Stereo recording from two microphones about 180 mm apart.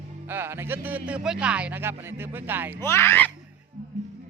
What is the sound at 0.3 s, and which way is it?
Speech, 10° right (ahead or behind).